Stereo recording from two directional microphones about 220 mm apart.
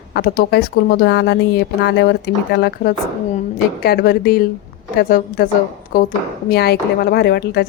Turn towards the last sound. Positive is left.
turn(degrees=45)  # may be behind; listen again after turning